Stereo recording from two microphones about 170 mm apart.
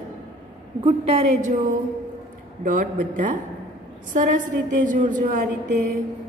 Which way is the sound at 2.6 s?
50° right (ahead or behind).